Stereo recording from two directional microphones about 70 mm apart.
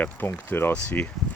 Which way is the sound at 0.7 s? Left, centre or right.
Left.